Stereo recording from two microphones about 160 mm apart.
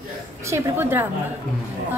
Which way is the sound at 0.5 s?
15° right (ahead or behind).